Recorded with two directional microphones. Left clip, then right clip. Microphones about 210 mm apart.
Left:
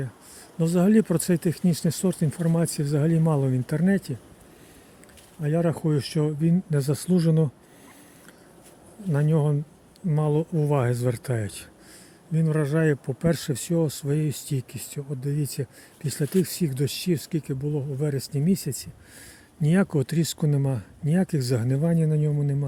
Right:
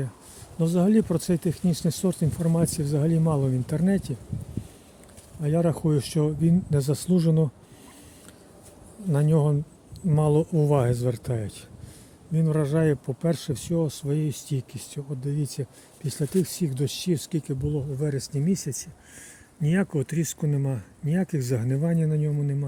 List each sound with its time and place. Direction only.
0.6 s speech: 10° left (ahead or behind)
5.4 s speech: 5° left (ahead or behind)
9.1 s speech: centre (ahead or behind); by 22.5 s 15° left (ahead or behind)